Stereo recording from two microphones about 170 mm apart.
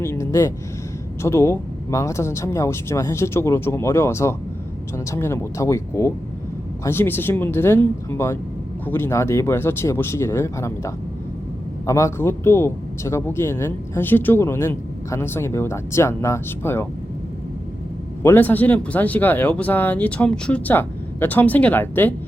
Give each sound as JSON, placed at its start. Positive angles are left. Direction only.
{"t": 0.0, "sound": "a sound", "side_deg": 15}
{"t": 1.2, "sound": "speech", "side_deg": 15}
{"t": 18.2, "sound": "speech", "side_deg": 15}